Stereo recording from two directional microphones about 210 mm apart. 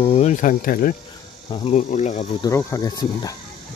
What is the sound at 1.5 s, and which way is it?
Speech, 30° left (ahead or behind).